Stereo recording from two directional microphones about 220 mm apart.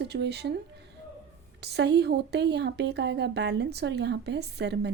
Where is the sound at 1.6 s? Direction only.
50° right (ahead or behind).